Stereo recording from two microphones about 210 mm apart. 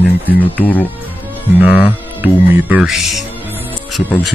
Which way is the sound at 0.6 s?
10° left (ahead or behind).